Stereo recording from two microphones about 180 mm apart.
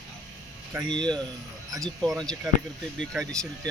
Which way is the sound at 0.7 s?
20° right (ahead or behind).